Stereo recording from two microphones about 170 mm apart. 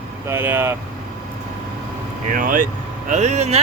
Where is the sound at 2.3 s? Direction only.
50° right (ahead or behind).